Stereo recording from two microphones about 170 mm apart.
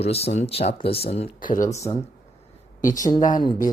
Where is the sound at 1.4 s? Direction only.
50° left (ahead or behind).